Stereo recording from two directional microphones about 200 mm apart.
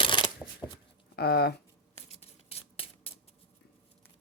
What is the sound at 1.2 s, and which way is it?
Speech, 50° left (ahead or behind).